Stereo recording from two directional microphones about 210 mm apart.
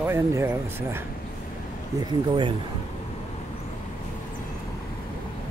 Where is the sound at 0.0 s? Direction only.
10° right (ahead or behind).